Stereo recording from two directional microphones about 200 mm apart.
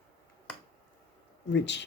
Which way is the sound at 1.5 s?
60° left (ahead or behind).